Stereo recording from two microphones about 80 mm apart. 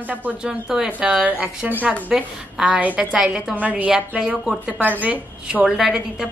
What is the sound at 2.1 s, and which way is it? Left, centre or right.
A woman's voice, centre.